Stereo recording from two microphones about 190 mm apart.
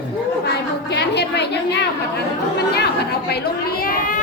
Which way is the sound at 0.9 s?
60° left (ahead or behind).